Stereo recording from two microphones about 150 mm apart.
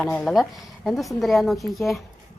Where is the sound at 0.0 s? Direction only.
5° left (ahead or behind).